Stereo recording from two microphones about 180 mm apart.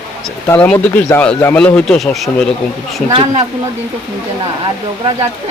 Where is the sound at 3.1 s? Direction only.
35° right (ahead or behind).